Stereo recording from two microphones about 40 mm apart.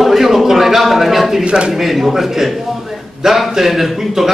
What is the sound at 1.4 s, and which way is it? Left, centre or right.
Speech, right.